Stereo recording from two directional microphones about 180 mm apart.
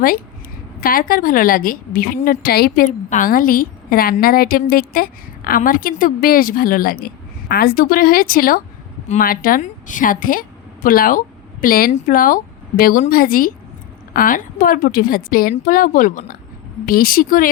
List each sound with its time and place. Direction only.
0.8 s a woman's voice: 50° left (ahead or behind)
2.8 s a woman's voice: 45° left (ahead or behind)